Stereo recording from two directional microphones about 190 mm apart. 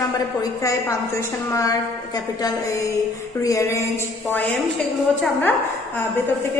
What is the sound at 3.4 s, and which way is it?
Speech, 15° left (ahead or behind).